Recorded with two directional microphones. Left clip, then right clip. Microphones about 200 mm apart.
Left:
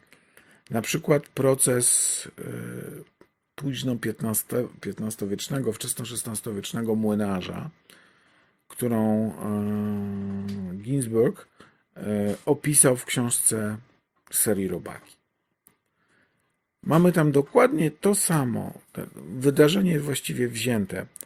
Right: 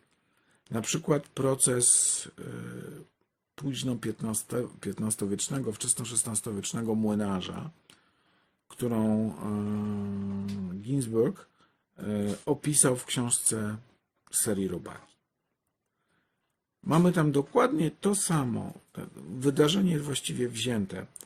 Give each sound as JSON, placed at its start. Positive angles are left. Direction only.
{"t": 0.7, "sound": "speech", "side_deg": 15}
{"t": 5.5, "sound": "speech", "side_deg": 20}
{"t": 6.0, "sound": "speech", "side_deg": 5}
{"t": 16.9, "sound": "speech", "side_deg": 20}